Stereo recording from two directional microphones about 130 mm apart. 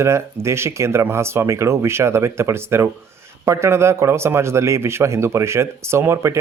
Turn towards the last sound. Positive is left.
turn(degrees=-20)  # may be behind; listen again after turning